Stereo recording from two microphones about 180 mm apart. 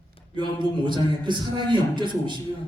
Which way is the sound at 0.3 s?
25° right (ahead or behind).